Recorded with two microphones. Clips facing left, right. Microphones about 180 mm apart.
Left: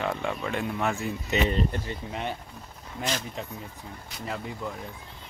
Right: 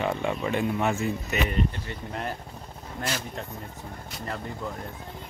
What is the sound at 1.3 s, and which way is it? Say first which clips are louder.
Speech: left 6 dB; 25° left (ahead or behind).